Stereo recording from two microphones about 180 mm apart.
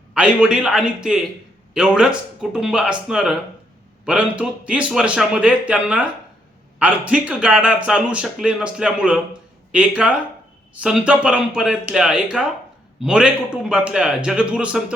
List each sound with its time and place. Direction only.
0.1 s a man's voice: 5° right (ahead or behind)